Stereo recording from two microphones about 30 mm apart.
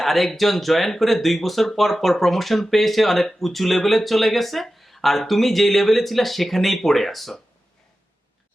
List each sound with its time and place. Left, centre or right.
0.0 s speech: centre